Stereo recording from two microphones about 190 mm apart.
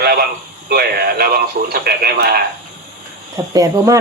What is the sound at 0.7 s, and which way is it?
Speech, 55° right (ahead or behind).